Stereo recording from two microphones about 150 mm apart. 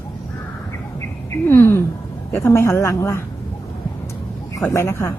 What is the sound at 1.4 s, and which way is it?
Speech, 15° left (ahead or behind).